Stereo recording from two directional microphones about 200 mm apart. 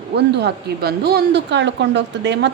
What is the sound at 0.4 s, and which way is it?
A woman's voice, 50° right (ahead or behind).